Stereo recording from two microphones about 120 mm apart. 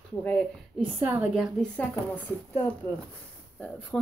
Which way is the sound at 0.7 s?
10° right (ahead or behind).